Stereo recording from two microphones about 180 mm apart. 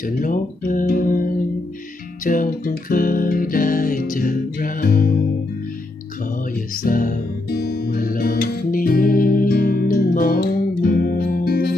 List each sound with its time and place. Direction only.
0.0 s speech: 50° left (ahead or behind)
2.2 s music: 50° left (ahead or behind)
6.8 s music: 50° left (ahead or behind)